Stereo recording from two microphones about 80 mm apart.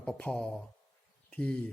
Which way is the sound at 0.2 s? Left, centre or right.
Centre.